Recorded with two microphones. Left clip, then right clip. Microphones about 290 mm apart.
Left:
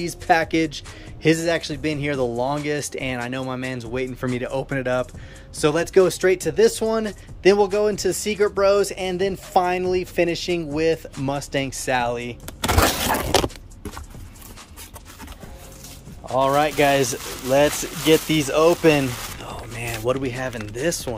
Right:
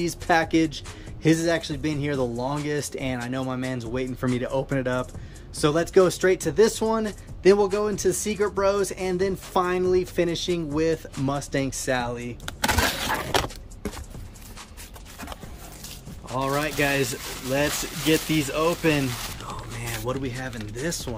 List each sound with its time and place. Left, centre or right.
0.0 s speech: centre
13.0 s breaking: left
16.3 s speech: centre